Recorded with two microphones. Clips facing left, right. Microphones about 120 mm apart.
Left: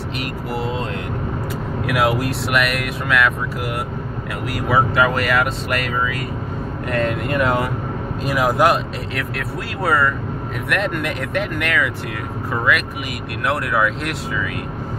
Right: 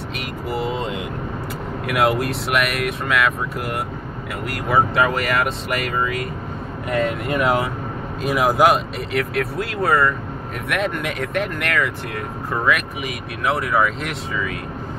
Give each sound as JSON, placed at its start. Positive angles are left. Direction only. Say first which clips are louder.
{"t": 0.2, "sound": "speech", "louder": "right 1 dB", "side_deg": 0}
{"t": 13.5, "sound": "speech", "louder": "even", "side_deg": 0}